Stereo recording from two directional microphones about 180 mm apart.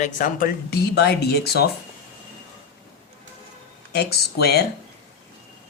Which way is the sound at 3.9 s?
65° left (ahead or behind).